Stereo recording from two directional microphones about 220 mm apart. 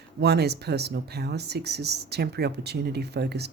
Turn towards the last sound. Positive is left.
turn(degrees=-50)  # may be behind; listen again after turning